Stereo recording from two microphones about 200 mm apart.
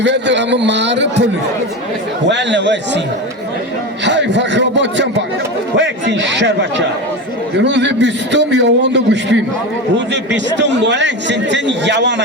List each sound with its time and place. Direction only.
0.0 s a man's voice: 60° right (ahead or behind)
4.0 s a man's voice: 60° right (ahead or behind)